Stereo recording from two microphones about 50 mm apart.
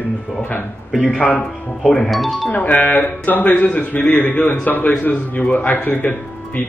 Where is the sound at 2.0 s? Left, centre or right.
Centre.